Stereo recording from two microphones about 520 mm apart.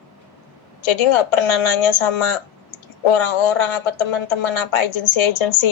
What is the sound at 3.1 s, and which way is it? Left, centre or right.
Speech, left.